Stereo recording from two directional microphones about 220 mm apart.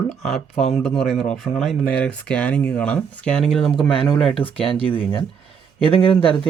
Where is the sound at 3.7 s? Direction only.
25° left (ahead or behind).